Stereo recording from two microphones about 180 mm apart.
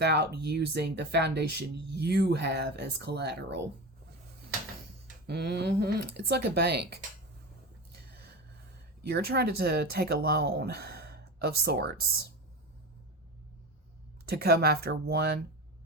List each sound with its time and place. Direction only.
0.0 s speech: 70° right (ahead or behind)
5.0 s speech: 65° right (ahead or behind)
9.0 s speech: 65° right (ahead or behind)
14.3 s speech: 60° right (ahead or behind)